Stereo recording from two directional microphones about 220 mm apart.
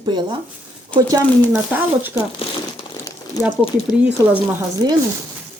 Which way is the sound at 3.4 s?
5° right (ahead or behind).